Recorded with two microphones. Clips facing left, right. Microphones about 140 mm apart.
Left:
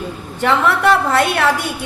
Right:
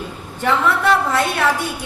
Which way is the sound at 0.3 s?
75° left (ahead or behind).